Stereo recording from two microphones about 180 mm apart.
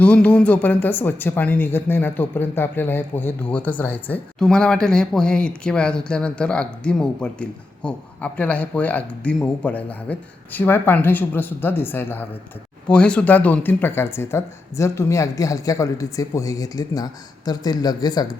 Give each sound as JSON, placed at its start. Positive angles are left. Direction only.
{"t": 0.0, "sound": "speech", "side_deg": 5}